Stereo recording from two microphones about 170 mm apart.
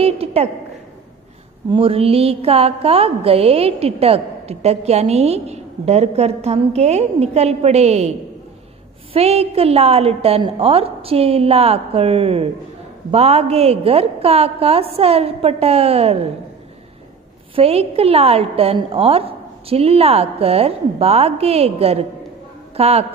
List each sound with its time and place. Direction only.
0.0 s a sound: 35° right (ahead or behind)
1.7 s a woman's voice: 35° right (ahead or behind)
9.1 s a woman's voice: 35° right (ahead or behind)
17.6 s a woman's voice: 35° right (ahead or behind)